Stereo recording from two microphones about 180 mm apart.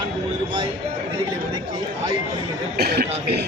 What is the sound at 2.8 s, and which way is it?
Speech, 60° right (ahead or behind).